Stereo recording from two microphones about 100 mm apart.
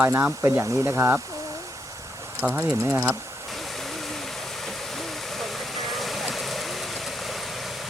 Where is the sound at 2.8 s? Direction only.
25° right (ahead or behind).